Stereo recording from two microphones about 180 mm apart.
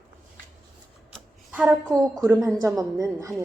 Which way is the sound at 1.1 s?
5° right (ahead or behind).